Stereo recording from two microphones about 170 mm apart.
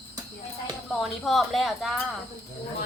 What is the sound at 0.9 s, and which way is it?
Speech, centre (ahead or behind).